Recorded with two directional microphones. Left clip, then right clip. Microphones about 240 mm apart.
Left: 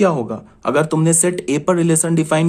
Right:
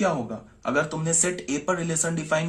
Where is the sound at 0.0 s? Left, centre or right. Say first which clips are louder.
Left 9 dB; left.